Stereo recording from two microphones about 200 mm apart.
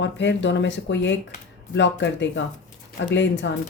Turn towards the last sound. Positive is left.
turn(degrees=65)  # may be behind; listen again after turning